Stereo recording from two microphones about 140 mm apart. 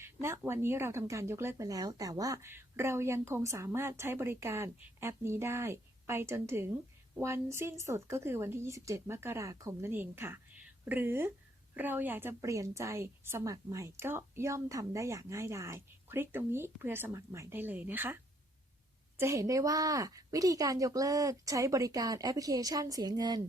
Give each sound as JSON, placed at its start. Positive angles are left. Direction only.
{"t": 0.0, "sound": "speech", "side_deg": -20}